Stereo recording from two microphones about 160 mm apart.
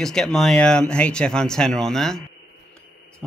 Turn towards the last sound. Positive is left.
turn(degrees=5)  # may be behind; listen again after turning